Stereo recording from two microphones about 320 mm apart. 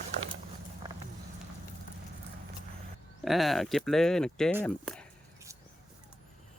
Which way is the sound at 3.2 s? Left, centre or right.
Centre.